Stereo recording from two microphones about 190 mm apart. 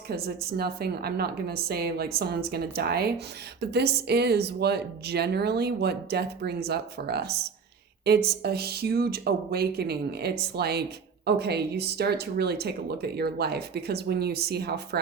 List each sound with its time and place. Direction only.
0.1 s speech: 55° right (ahead or behind)